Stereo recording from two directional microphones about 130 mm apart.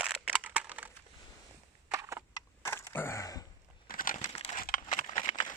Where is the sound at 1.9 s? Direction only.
20° right (ahead or behind).